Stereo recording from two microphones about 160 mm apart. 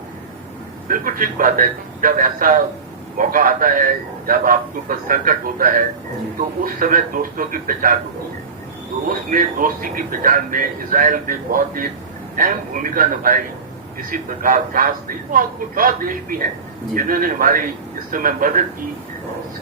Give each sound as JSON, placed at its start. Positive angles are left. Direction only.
{"t": 0.9, "sound": "a man's voice", "side_deg": -60}
{"t": 9.0, "sound": "a man's voice", "side_deg": -60}